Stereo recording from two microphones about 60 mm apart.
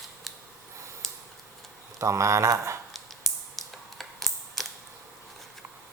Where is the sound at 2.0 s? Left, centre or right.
Right.